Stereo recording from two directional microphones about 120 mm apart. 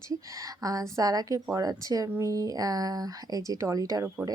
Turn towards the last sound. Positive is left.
turn(degrees=-30)  # may be behind; listen again after turning